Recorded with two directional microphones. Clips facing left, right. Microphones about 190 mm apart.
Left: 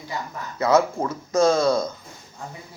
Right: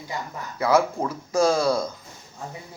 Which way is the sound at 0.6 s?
20° left (ahead or behind).